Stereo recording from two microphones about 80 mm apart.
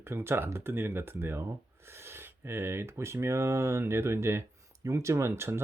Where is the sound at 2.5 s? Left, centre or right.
Right.